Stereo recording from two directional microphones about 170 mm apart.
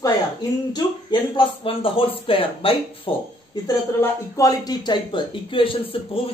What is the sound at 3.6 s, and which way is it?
Speech, 20° left (ahead or behind).